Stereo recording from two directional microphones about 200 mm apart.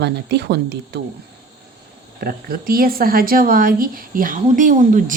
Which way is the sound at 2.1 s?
50° right (ahead or behind).